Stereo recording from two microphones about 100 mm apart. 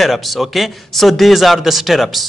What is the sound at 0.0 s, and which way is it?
A man's voice, centre (ahead or behind).